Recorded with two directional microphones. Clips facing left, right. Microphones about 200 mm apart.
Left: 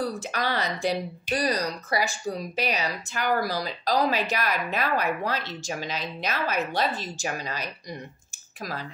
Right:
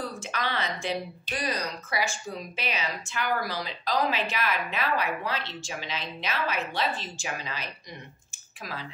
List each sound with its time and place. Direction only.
0.0 s speech: 40° left (ahead or behind)